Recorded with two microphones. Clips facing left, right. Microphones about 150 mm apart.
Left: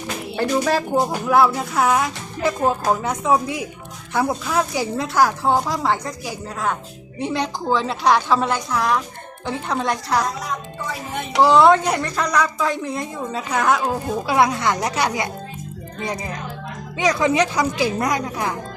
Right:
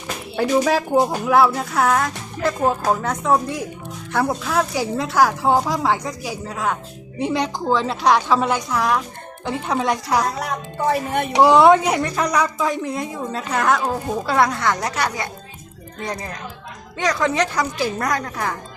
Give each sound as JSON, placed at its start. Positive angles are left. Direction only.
{"t": 0.3, "sound": "a woman's voice", "side_deg": -5}
{"t": 10.4, "sound": "music", "side_deg": -60}
{"t": 11.3, "sound": "a woman's voice", "side_deg": -15}
{"t": 17.0, "sound": "a woman's voice", "side_deg": 10}